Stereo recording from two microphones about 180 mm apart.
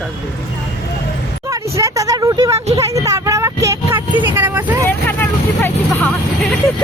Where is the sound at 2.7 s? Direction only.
20° right (ahead or behind).